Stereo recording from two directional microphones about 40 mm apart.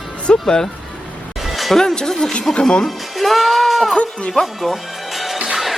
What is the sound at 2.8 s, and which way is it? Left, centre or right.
Speech, centre.